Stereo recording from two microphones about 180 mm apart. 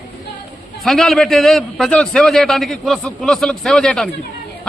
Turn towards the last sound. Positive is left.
turn(degrees=5)  # may be behind; listen again after turning